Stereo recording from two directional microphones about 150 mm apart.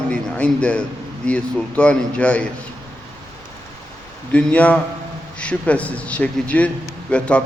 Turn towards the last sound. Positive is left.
turn(degrees=5)  # may be behind; listen again after turning